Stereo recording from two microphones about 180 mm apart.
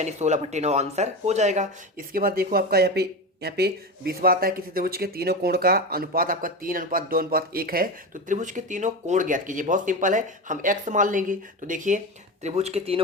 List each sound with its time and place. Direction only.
0.0 s speech: 40° right (ahead or behind)